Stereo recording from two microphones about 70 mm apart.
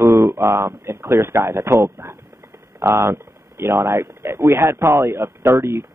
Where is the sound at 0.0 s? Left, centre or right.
Right.